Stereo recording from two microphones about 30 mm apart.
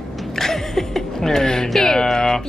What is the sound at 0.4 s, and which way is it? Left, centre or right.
Speech, centre.